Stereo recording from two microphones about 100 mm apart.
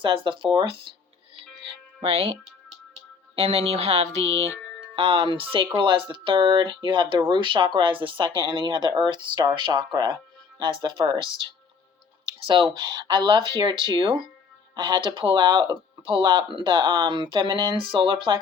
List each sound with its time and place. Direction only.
0.0 s speech: 55° right (ahead or behind)
1.6 s music: 65° right (ahead or behind); by 2.4 s 90° right
3.3 s speech: 90° right
4.9 s speech: 65° right (ahead or behind)
12.5 s speech: 50° right (ahead or behind)